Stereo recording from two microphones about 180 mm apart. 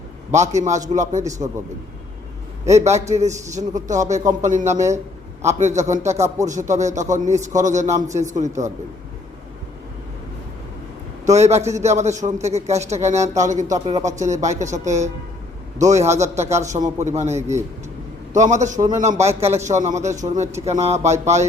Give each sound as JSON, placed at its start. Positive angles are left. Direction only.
{"t": 0.3, "sound": "a man's voice", "side_deg": -40}
{"t": 2.6, "sound": "a man's voice", "side_deg": -40}
{"t": 11.3, "sound": "a man's voice", "side_deg": -40}
{"t": 18.8, "sound": "speech", "side_deg": -20}
{"t": 19.0, "sound": "a man's voice", "side_deg": -40}